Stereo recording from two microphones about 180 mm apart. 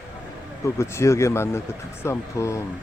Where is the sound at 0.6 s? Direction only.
15° left (ahead or behind).